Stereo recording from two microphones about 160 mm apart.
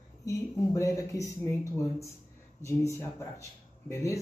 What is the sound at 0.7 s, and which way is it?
A man's voice, 20° left (ahead or behind).